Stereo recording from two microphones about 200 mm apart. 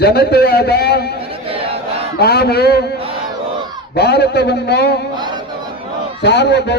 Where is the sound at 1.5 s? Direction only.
30° right (ahead or behind).